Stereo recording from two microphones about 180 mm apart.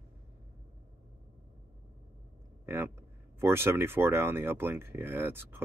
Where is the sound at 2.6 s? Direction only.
15° right (ahead or behind).